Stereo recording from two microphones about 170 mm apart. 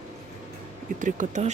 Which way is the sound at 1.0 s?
45° right (ahead or behind).